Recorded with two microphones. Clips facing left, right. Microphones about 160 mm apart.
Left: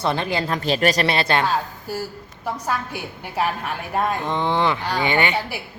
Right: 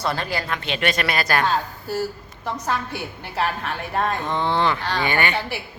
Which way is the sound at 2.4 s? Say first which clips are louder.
Even; 10° left (ahead or behind).